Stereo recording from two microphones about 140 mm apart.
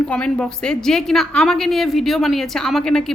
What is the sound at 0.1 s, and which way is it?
A woman's voice, 10° left (ahead or behind).